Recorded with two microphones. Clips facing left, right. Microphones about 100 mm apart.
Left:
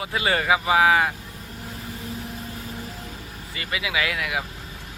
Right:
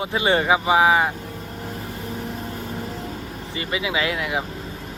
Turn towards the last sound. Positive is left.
turn(degrees=-25)  # may be behind; listen again after turning